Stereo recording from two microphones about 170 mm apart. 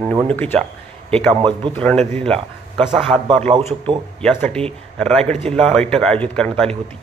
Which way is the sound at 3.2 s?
40° right (ahead or behind).